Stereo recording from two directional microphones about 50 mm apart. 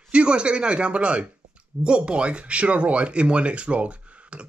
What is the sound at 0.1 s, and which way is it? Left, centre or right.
Speech, right.